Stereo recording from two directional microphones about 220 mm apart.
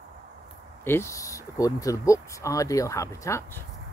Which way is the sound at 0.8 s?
10° left (ahead or behind).